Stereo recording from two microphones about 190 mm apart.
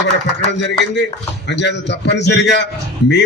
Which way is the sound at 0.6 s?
70° left (ahead or behind).